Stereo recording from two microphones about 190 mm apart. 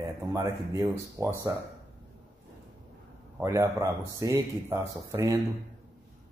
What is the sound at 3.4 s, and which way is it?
A man's voice, 15° right (ahead or behind).